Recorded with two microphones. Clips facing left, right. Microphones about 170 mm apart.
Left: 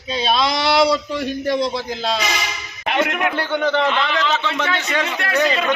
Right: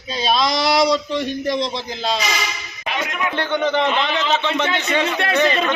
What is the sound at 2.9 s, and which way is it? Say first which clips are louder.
Speech: left 5 dB; 60° left (ahead or behind).